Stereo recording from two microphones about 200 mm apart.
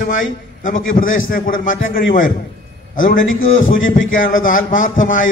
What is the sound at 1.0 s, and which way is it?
Speech, 80° left.